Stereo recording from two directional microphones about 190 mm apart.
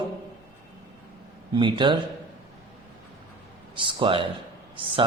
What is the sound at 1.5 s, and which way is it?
Speech, 25° right (ahead or behind).